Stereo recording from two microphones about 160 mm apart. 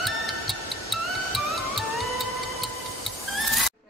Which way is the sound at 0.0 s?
Centre (ahead or behind).